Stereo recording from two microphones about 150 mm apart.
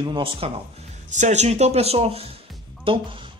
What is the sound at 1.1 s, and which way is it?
Speech, 50° right (ahead or behind).